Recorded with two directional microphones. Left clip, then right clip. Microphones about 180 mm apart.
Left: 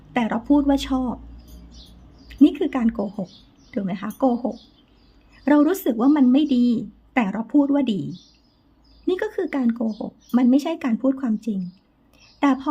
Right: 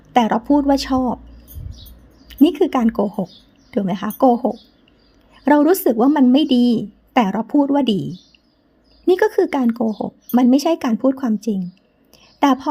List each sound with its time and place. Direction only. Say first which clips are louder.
0.1 s speech: right 6 dB; 35° right (ahead or behind)
2.2 s speech: right 3 dB; 35° right (ahead or behind)
6.3 s speech: right 4 dB; 40° right (ahead or behind)
9.0 s speech: right 9 dB; 40° right (ahead or behind)
12.1 s a sound: right 5 dB; 35° right (ahead or behind)